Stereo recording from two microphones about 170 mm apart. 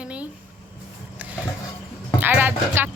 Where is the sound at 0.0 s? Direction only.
5° right (ahead or behind).